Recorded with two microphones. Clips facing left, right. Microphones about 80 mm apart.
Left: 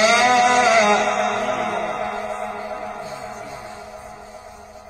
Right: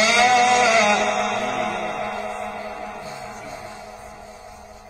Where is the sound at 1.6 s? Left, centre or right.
Left.